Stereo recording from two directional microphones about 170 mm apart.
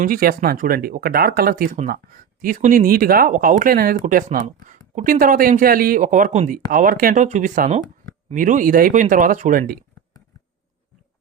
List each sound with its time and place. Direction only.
0.0 s speech: 60° right (ahead or behind)